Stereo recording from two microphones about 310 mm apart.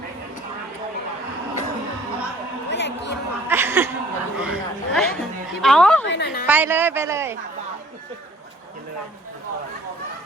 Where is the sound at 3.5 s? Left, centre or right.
Centre.